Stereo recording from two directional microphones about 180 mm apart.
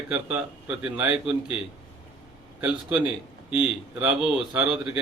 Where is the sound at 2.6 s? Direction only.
10° right (ahead or behind).